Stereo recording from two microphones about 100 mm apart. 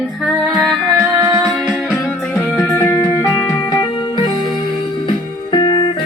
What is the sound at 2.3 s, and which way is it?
Music, 25° left (ahead or behind).